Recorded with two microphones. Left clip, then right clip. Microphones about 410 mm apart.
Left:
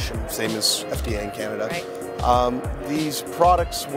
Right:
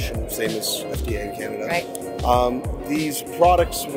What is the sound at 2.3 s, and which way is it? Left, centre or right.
Speech, left.